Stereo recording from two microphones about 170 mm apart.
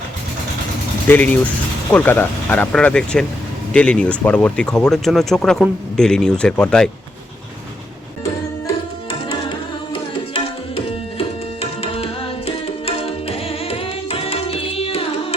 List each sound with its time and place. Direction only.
1.0 s speech: 10° left (ahead or behind)
9.5 s tabla: 30° left (ahead or behind)
11.6 s tabla: 35° left (ahead or behind)